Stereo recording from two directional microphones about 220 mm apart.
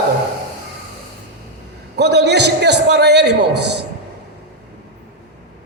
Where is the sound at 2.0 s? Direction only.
50° right (ahead or behind).